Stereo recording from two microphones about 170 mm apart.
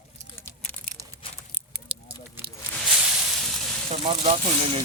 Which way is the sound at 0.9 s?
55° left (ahead or behind).